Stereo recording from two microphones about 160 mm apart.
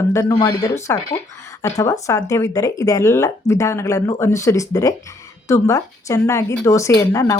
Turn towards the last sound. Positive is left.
turn(degrees=20)  # may be behind; listen again after turning